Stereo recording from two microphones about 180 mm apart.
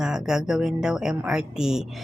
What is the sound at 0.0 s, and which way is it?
A woman's voice, 5° right (ahead or behind).